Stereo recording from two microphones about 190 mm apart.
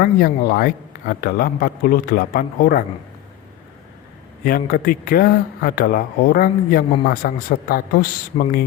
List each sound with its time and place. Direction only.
0.0 s speech: 50° left (ahead or behind)
4.4 s speech: 50° left (ahead or behind)